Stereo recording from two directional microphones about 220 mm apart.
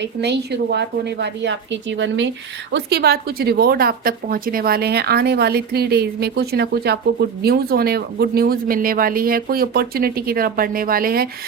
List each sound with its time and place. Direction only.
0.0 s a woman's voice: 50° right (ahead or behind)